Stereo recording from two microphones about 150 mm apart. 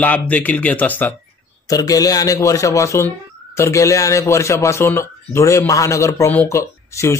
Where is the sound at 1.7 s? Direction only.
25° left (ahead or behind).